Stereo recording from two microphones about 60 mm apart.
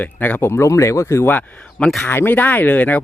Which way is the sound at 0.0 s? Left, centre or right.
Left.